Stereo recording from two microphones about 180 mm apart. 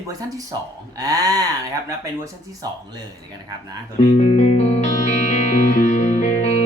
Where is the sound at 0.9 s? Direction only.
20° right (ahead or behind).